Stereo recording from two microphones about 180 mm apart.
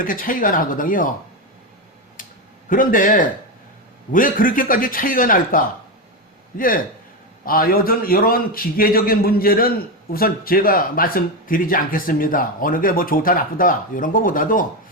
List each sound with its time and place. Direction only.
0.0 s a man's voice: 50° left (ahead or behind)
2.2 s a sound: 50° left (ahead or behind)
2.6 s a man's voice: 50° left (ahead or behind)